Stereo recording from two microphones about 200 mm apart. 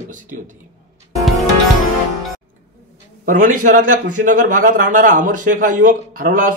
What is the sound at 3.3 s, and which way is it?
Speech, 40° right (ahead or behind).